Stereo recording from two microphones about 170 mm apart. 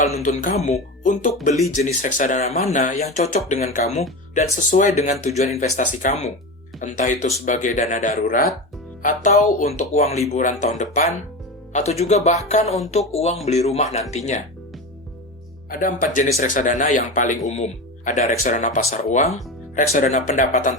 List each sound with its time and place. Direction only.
0.0 s a man's voice: 45° left (ahead or behind)
15.7 s a man's voice: 50° left (ahead or behind)